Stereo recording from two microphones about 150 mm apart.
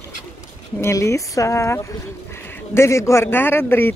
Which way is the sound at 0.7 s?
20° left (ahead or behind).